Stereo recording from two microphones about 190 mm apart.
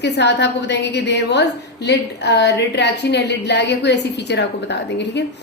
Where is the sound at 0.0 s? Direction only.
65° left (ahead or behind).